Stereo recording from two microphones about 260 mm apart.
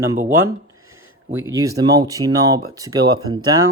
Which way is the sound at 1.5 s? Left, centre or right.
Centre.